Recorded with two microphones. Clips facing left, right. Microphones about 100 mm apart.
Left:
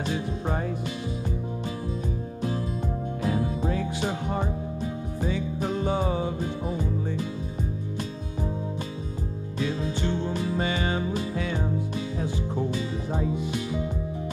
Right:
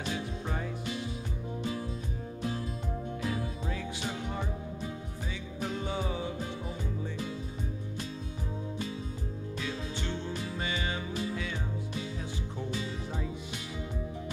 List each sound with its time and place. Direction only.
0.0 s music: 40° left (ahead or behind)
3.2 s music: 45° left (ahead or behind)
9.6 s music: 35° left (ahead or behind)
10.3 s music: 50° left (ahead or behind)
13.1 s music: 45° left (ahead or behind)